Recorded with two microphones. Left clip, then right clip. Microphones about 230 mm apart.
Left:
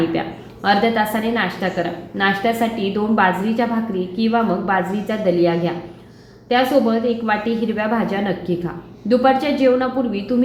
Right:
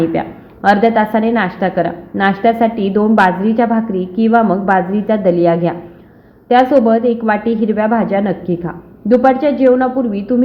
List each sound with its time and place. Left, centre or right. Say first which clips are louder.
0.1 s a woman's voice: right 4 dB; centre